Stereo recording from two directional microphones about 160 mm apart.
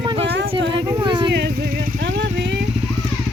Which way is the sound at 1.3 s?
90° right.